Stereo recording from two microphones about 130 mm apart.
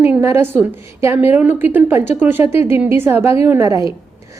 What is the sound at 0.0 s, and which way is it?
A woman's voice, 15° right (ahead or behind).